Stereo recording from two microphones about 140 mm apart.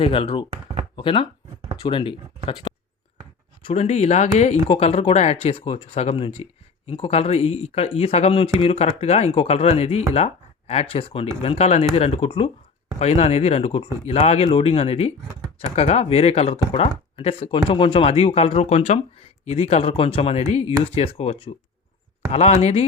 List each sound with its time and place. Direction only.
0.0 s speech: 40° left (ahead or behind)
0.5 s chopping: 50° right (ahead or behind)
0.9 s speech: 35° left (ahead or behind)
2.7 s a sound: 45° left (ahead or behind)
3.6 s speech: 45° left (ahead or behind)
13.0 s speech: 50° left (ahead or behind)